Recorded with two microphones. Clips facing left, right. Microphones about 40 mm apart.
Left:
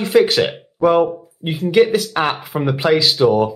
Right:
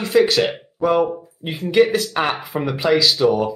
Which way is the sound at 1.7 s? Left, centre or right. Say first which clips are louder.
Left 2 dB; centre.